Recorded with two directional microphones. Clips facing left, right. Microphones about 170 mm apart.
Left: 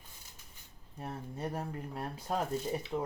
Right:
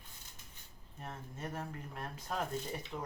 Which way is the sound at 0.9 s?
35° left (ahead or behind).